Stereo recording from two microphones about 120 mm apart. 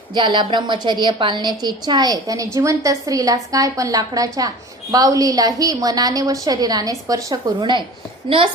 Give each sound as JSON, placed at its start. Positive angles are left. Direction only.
{"t": 0.1, "sound": "a woman's voice", "side_deg": -40}
{"t": 7.6, "sound": "a woman's voice", "side_deg": -40}